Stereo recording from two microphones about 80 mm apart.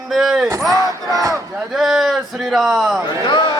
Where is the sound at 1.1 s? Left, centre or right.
Right.